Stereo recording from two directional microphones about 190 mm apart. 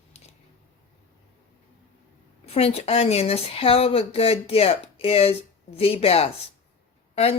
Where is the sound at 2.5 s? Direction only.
30° left (ahead or behind).